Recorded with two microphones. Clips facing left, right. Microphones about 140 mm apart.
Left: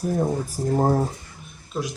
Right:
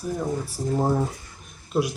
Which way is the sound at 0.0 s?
45° left (ahead or behind).